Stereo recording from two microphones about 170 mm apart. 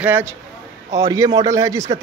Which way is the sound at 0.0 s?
15° right (ahead or behind).